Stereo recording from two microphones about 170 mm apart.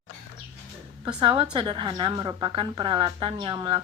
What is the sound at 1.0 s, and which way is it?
A woman's voice, 30° right (ahead or behind).